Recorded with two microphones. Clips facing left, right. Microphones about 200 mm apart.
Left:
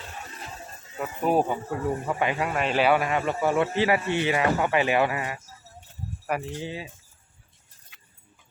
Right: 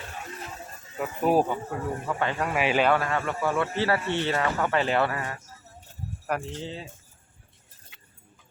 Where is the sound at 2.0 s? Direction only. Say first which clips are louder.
Left 2 dB; 15° left (ahead or behind).